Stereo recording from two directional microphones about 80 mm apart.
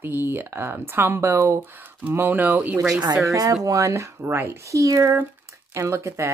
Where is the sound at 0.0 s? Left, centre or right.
Right.